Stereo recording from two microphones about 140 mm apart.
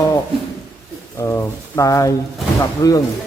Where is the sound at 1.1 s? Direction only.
20° left (ahead or behind).